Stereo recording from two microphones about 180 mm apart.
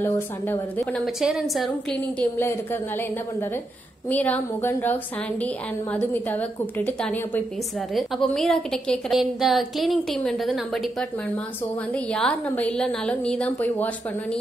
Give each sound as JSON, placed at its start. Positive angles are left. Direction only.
{"t": 0.0, "sound": "a woman's voice", "side_deg": 10}
{"t": 1.0, "sound": "a woman's voice", "side_deg": 0}
{"t": 2.0, "sound": "a woman's voice", "side_deg": 10}